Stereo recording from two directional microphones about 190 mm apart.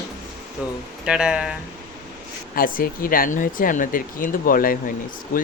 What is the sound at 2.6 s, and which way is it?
Speech, 50° left (ahead or behind).